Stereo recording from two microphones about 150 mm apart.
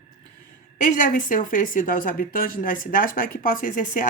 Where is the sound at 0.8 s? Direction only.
60° left (ahead or behind).